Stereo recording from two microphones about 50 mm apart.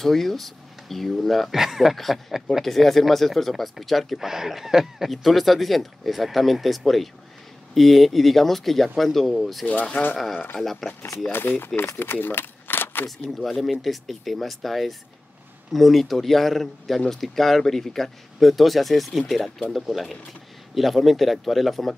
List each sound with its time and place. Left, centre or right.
0.0 s speech: centre
9.9 s speech: left
10.6 s speech: centre
11.3 s speech: left
12.0 s a sound: left
13.4 s speech: centre